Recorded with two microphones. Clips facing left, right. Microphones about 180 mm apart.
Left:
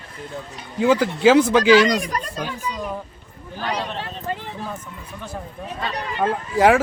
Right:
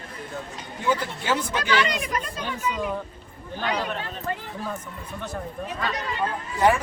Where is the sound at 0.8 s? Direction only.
90° left.